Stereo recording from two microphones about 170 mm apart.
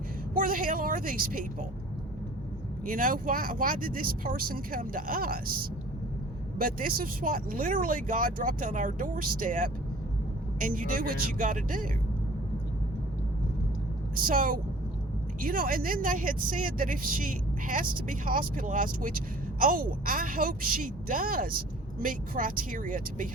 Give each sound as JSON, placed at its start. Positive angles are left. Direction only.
{"t": 0.3, "sound": "speech", "side_deg": -55}
{"t": 2.8, "sound": "speech", "side_deg": -55}
{"t": 14.3, "sound": "speech", "side_deg": -55}